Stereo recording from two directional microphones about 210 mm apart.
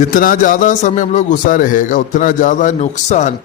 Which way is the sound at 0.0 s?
40° left (ahead or behind).